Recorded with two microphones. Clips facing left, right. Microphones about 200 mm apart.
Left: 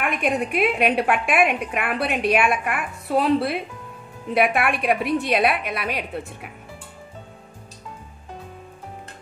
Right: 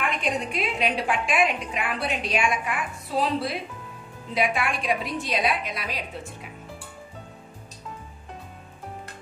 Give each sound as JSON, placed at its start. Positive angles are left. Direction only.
{"t": 0.0, "sound": "a woman's voice", "side_deg": 60}